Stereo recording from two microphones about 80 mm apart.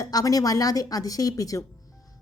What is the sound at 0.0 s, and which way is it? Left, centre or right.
A woman's voice, left.